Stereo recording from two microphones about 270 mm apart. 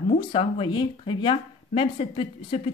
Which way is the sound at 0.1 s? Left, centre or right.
Centre.